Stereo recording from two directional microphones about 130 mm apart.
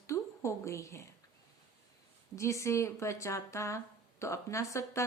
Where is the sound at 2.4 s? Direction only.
20° left (ahead or behind).